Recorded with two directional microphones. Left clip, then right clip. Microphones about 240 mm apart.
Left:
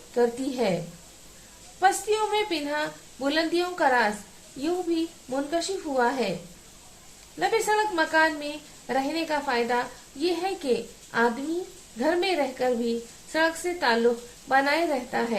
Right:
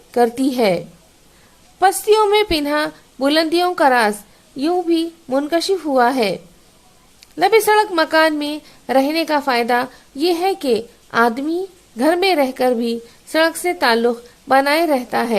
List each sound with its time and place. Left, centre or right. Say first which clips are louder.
0.1 s a woman's voice: right 9 dB; right
2.0 s a woman's voice: right 12 dB; right
7.3 s a woman's voice: right 11 dB; right